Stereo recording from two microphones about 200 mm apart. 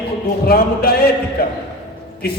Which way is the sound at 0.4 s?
50° left (ahead or behind).